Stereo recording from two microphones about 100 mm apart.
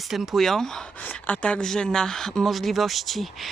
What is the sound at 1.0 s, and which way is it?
Speech, 15° left (ahead or behind).